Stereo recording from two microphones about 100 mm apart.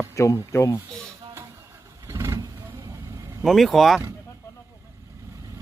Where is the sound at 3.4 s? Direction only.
Centre (ahead or behind).